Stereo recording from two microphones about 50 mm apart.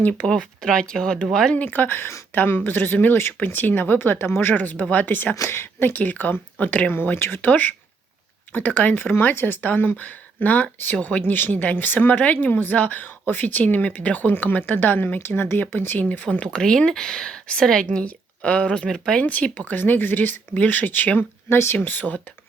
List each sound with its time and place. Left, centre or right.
0.3 s speech: centre
1.5 s a woman's voice: left
4.5 s a woman's voice: left
5.5 s speech: left
5.9 s a woman's voice: left
6.9 s a woman's voice: left
15.2 s a woman's voice: left
16.4 s speech: centre
18.9 s speech: centre
19.2 s a woman's voice: left
21.5 s a woman's voice: left